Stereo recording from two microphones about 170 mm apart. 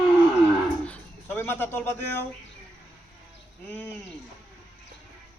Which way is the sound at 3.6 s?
10° left (ahead or behind).